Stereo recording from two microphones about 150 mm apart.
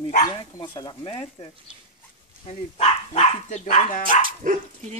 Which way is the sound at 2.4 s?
45° left (ahead or behind).